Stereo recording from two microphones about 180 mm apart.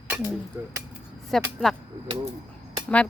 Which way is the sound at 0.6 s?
10° right (ahead or behind).